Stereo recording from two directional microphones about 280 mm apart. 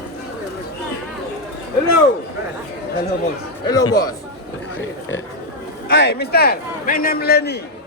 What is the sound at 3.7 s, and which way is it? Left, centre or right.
Speech, centre.